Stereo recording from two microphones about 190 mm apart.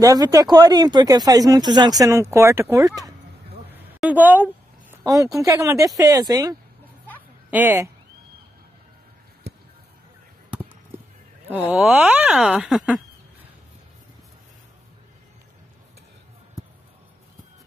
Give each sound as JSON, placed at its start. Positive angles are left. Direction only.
{"t": 0.0, "sound": "speech", "side_deg": -15}
{"t": 3.7, "sound": "a sound", "side_deg": -10}
{"t": 5.0, "sound": "speech", "side_deg": -15}
{"t": 7.5, "sound": "speech", "side_deg": -10}
{"t": 10.5, "sound": "chop", "side_deg": -10}
{"t": 11.7, "sound": "speech", "side_deg": -10}